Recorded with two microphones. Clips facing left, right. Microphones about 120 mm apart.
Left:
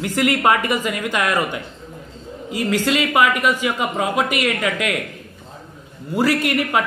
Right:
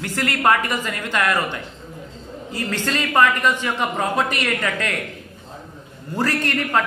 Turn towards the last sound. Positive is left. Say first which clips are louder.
# left 3 dB
turn(degrees=10)  # may be behind; listen again after turning